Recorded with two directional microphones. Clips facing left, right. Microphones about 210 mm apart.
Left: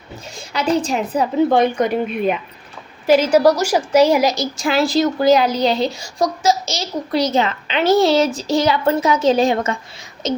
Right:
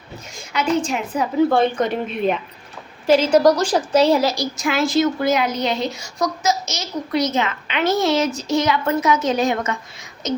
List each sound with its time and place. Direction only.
0.3 s speech: 35° left (ahead or behind)
1.5 s a woman's voice: 15° left (ahead or behind)
4.5 s speech: 35° left (ahead or behind)